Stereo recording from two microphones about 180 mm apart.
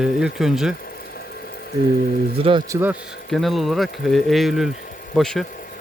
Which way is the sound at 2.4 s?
30° right (ahead or behind).